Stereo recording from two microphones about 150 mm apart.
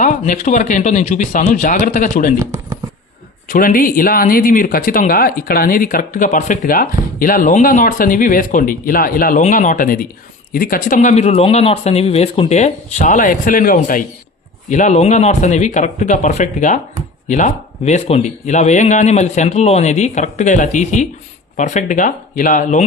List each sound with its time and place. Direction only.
0.0 s speech: 55° left (ahead or behind)
3.5 s speech: 65° left (ahead or behind)
14.7 s speech: 55° left (ahead or behind)